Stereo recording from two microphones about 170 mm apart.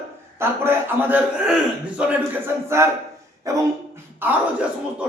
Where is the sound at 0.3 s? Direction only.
15° right (ahead or behind).